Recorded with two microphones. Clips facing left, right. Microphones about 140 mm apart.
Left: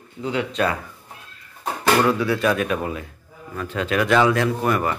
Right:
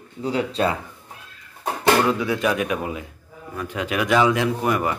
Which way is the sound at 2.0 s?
15° right (ahead or behind).